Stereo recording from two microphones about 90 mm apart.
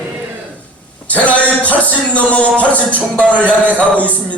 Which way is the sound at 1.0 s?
15° left (ahead or behind).